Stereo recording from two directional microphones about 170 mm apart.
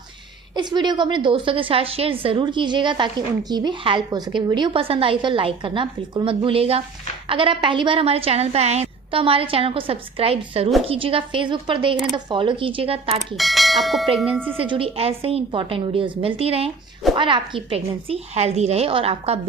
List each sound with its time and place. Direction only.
0.5 s a woman's voice: 25° right (ahead or behind)
13.1 s speech: centre (ahead or behind)
14.5 s a woman's voice: 35° right (ahead or behind)